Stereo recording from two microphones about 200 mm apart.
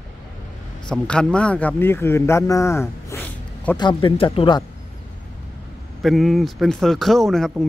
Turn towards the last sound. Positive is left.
turn(degrees=0)  # may be behind; listen again after turning